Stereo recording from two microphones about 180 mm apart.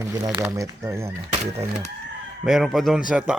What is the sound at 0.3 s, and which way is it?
Speech, 15° right (ahead or behind).